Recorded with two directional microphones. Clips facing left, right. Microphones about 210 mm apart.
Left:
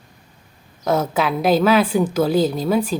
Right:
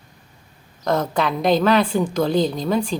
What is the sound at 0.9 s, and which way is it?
A woman's voice, 5° left (ahead or behind).